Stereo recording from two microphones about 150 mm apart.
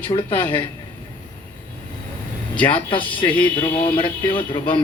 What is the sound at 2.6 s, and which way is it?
Speech, 10° left (ahead or behind).